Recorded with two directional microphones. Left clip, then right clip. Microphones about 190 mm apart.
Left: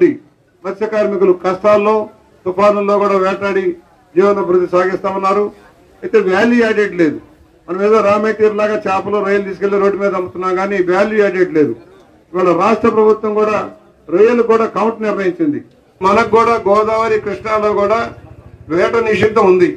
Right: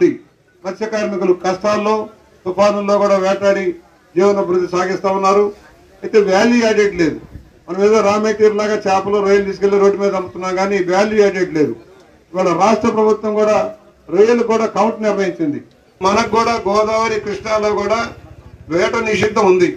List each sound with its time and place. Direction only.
0.7 s a man's voice: 55° right (ahead or behind)